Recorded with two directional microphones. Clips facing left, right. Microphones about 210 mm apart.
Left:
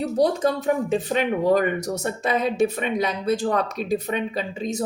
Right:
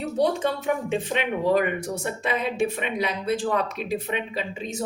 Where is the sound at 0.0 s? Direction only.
35° left (ahead or behind).